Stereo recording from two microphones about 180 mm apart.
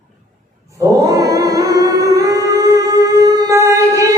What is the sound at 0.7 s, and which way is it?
Singing, 20° right (ahead or behind).